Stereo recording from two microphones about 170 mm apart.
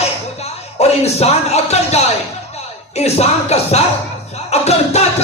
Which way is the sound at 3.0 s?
40° left (ahead or behind).